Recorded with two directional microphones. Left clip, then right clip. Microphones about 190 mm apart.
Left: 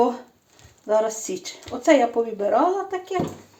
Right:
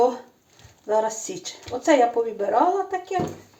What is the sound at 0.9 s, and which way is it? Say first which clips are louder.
Speech: left 1 dB; 30° left (ahead or behind).